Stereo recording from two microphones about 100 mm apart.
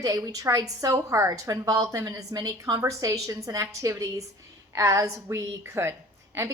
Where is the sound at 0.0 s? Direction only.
35° right (ahead or behind).